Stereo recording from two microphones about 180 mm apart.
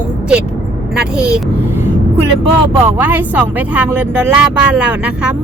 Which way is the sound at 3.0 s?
10° right (ahead or behind).